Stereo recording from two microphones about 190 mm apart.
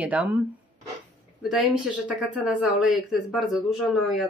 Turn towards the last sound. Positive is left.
turn(degrees=0)  # may be behind; listen again after turning